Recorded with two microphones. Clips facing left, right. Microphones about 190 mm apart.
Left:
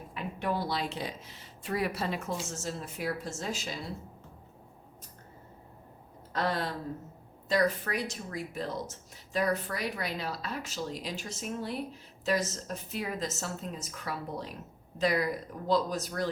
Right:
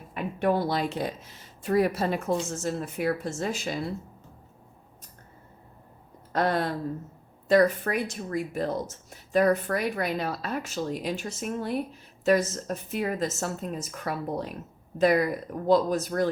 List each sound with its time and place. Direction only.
0.1 s speech: 50° right (ahead or behind)
6.3 s speech: 55° right (ahead or behind)